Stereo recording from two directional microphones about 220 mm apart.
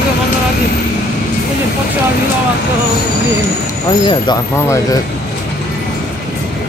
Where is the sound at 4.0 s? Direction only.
20° left (ahead or behind).